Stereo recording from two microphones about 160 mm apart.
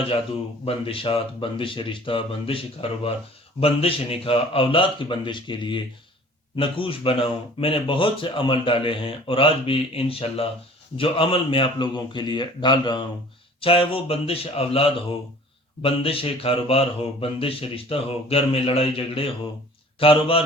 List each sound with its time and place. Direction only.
0.6 s speech: 35° left (ahead or behind)